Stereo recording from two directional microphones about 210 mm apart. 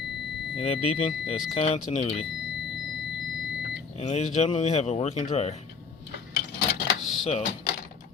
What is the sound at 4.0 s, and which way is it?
Speech, 30° left (ahead or behind).